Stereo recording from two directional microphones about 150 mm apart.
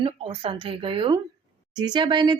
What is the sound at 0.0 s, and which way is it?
Speech, 40° right (ahead or behind).